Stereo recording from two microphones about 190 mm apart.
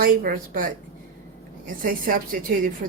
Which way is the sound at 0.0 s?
50° right (ahead or behind).